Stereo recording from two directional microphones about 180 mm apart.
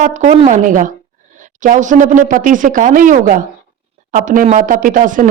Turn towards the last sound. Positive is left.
turn(degrees=-45)  # may be behind; listen again after turning